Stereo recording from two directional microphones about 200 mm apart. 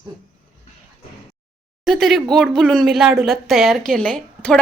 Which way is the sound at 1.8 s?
Centre (ahead or behind).